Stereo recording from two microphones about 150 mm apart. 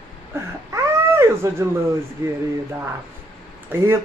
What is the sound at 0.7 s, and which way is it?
Wild animals, 20° right (ahead or behind).